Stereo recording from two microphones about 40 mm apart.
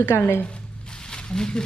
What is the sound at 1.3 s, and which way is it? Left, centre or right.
Speech, centre.